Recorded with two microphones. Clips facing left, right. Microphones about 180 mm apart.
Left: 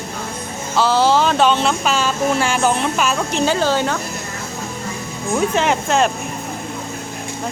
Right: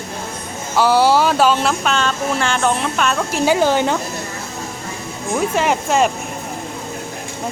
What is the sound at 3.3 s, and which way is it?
Speech, 10° right (ahead or behind).